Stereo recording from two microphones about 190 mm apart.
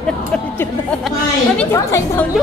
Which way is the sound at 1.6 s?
10° left (ahead or behind).